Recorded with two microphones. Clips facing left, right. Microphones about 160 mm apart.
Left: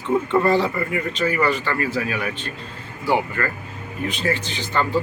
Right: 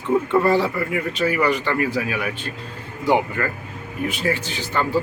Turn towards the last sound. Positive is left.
turn(degrees=-10)  # may be behind; listen again after turning